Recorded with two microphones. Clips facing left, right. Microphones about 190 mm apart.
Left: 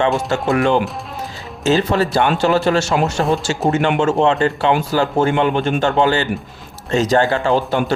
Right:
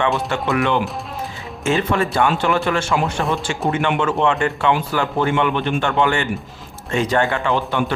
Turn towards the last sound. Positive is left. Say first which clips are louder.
# left 3 dB
turn(degrees=35)  # may be behind; listen again after turning